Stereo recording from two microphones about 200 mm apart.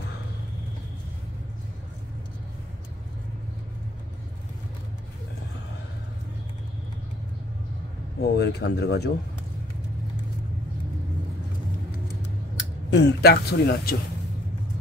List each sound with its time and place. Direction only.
8.2 s speech: 55° left (ahead or behind)
12.9 s a man's voice: 55° left (ahead or behind)